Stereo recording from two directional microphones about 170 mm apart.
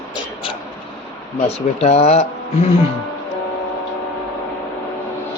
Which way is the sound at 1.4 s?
40° left (ahead or behind).